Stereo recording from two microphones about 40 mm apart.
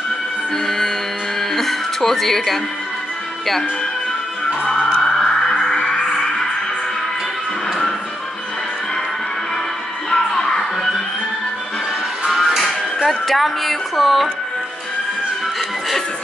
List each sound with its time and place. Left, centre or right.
0.7 s music: centre
5.0 s music: centre
5.8 s music: left
10.0 s music: centre
12.3 s music: centre
13.1 s speech: centre